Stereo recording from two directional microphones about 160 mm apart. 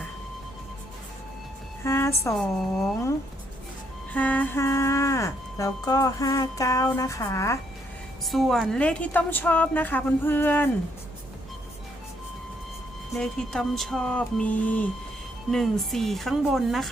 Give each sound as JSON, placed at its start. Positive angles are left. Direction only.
{"t": 1.8, "sound": "a woman's voice", "side_deg": 15}
{"t": 2.4, "sound": "speech", "side_deg": 0}
{"t": 4.1, "sound": "speech", "side_deg": 10}
{"t": 8.2, "sound": "a woman's voice", "side_deg": 0}
{"t": 13.1, "sound": "speech", "side_deg": 5}